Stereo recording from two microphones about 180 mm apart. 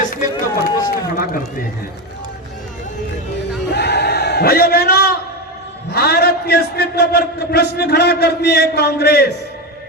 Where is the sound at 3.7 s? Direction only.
70° left (ahead or behind).